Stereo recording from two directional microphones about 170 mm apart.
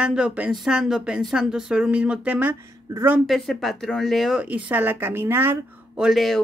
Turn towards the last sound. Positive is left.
turn(degrees=0)  # may be behind; listen again after turning